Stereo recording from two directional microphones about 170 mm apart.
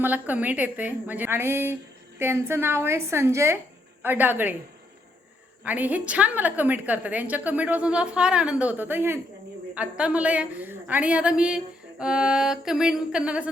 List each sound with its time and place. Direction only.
0.0 s a woman's voice: 10° right (ahead or behind)
5.6 s a woman's voice: 10° right (ahead or behind)